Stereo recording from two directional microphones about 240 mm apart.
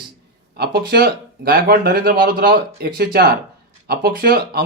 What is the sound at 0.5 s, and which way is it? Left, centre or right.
Speech, right.